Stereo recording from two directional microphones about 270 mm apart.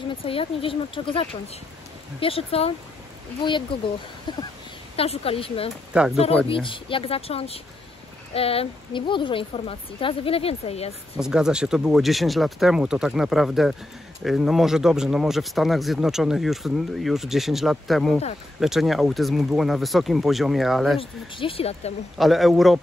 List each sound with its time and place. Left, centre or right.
0.1 s speech: centre
4.3 s a sound: centre
4.9 s speech: left
5.9 s speech: centre
6.5 s speech: centre
11.1 s speech: centre
21.0 s speech: centre
22.1 s speech: centre